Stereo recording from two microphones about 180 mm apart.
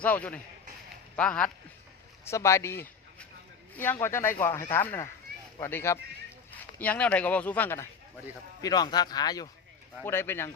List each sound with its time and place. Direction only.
0.0 s speech: 10° left (ahead or behind)
8.6 s speech: 20° left (ahead or behind)